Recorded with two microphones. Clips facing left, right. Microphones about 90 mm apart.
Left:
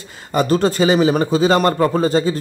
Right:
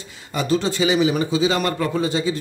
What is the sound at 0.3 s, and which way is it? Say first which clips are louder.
Speech: left 5 dB; 50° left (ahead or behind).